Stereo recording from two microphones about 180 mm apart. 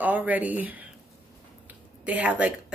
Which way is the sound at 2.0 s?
10° right (ahead or behind).